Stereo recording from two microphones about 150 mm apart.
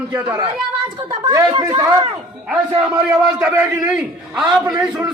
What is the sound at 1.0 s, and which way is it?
Speech, 25° right (ahead or behind).